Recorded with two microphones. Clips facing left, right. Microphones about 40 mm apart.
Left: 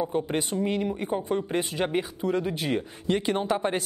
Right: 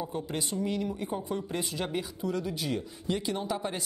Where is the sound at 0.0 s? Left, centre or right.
Left.